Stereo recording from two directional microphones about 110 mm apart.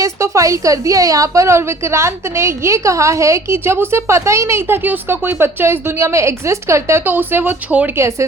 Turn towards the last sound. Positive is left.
turn(degrees=-15)  # may be behind; listen again after turning